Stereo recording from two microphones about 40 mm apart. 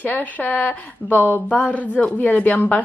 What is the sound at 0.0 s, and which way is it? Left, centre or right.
A woman's voice, left.